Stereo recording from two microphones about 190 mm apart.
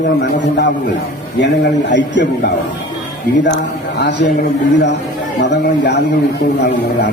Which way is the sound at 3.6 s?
65° left (ahead or behind).